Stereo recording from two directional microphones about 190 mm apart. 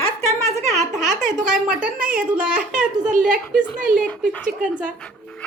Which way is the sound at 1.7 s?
5° right (ahead or behind).